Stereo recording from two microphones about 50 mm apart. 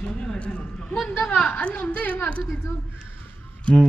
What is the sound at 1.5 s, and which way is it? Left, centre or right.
Speech, left.